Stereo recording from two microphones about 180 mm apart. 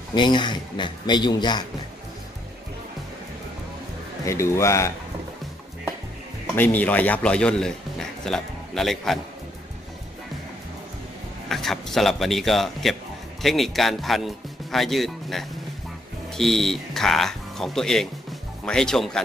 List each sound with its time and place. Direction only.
0.1 s speech: 25° left (ahead or behind)
4.3 s a man's voice: 15° left (ahead or behind)
6.5 s a man's voice: 10° left (ahead or behind)
11.4 s a man's voice: centre (ahead or behind)